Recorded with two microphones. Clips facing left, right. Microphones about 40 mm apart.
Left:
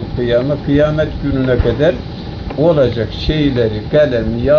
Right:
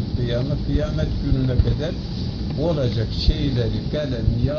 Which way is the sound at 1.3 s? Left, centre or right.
Left.